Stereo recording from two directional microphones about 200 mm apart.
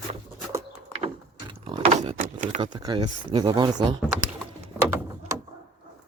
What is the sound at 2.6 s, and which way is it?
Speech, 20° right (ahead or behind).